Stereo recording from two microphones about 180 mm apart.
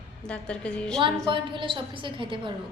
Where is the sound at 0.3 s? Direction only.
5° left (ahead or behind).